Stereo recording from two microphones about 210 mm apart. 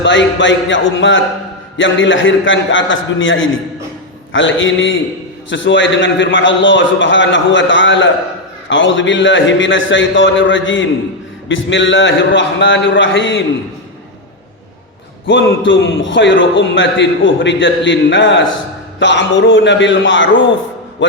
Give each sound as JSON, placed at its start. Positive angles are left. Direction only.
{"t": 0.0, "sound": "a man's voice", "side_deg": 60}
{"t": 15.3, "sound": "a man's voice", "side_deg": 60}